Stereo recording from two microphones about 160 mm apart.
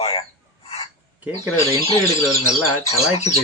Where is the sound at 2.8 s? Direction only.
45° left (ahead or behind).